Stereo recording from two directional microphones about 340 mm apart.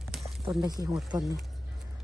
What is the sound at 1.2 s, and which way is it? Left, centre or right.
Speech, centre.